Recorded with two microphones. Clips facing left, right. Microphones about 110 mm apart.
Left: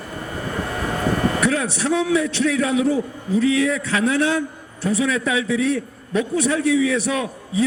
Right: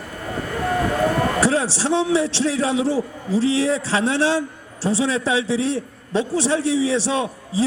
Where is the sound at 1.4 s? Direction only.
30° right (ahead or behind).